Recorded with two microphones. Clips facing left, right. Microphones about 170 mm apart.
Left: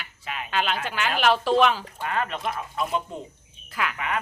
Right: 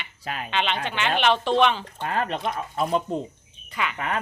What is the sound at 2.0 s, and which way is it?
Speech, 35° right (ahead or behind).